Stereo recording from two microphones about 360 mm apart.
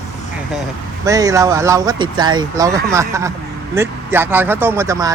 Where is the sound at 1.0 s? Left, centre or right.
Centre.